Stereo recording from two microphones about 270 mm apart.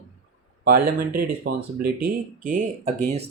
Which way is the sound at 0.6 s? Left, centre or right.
Right.